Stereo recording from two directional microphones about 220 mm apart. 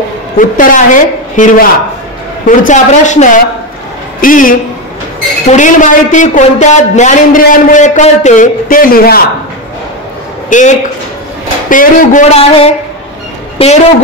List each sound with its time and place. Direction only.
0.4 s a woman's voice: 35° left (ahead or behind)
10.5 s a woman's voice: 35° left (ahead or behind)